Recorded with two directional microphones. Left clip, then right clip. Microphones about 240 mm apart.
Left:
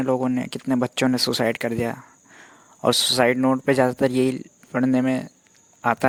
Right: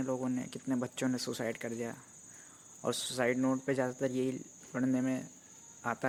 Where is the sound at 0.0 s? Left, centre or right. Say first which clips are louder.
Left 13 dB; left.